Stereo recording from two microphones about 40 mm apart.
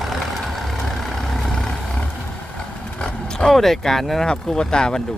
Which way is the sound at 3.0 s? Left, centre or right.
Centre.